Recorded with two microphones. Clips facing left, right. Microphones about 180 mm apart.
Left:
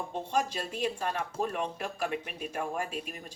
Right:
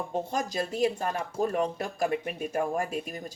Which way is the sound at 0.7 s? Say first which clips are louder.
Right 5 dB; 40° right (ahead or behind).